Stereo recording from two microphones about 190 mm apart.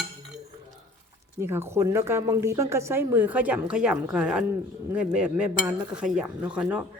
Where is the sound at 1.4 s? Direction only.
10° right (ahead or behind).